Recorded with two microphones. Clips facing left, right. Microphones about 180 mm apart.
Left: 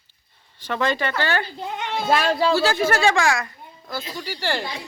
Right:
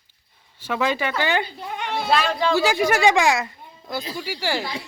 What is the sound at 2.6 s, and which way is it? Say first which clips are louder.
Speech: right 1 dB; 15° right (ahead or behind).